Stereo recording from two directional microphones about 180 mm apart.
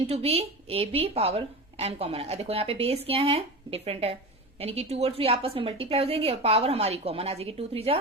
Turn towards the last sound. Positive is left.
turn(degrees=-35)  # may be behind; listen again after turning